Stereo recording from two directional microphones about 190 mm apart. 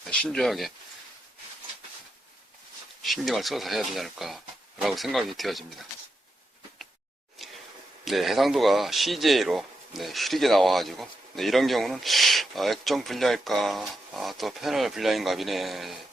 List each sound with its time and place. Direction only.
0.1 s speech: 5° left (ahead or behind)
3.0 s speech: centre (ahead or behind)
8.0 s speech: centre (ahead or behind)